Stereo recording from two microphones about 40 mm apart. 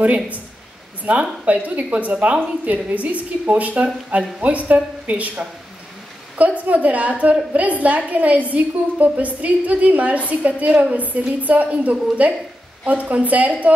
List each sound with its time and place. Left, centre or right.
0.0 s a woman's voice: right
1.4 s a woman's voice: right